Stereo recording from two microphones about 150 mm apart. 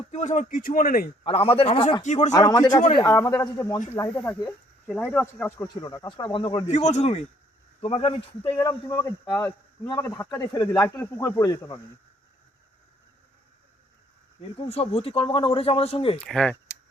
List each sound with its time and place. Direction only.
0.1 s speech: 55° left (ahead or behind); by 1.1 s 75° left (ahead or behind)
1.2 s speech: 40° left (ahead or behind); by 5.6 s 15° left (ahead or behind)
5.6 s speech: 25° left (ahead or behind)
6.7 s speech: 50° left (ahead or behind)
8.5 s speech: 20° left (ahead or behind)
14.5 s speech: 40° left (ahead or behind)
16.1 s speech: 5° left (ahead or behind)